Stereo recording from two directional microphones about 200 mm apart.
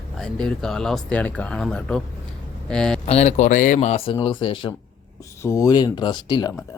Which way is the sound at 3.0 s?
35° left (ahead or behind).